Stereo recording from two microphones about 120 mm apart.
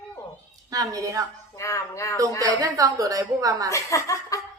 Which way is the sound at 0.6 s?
30° right (ahead or behind).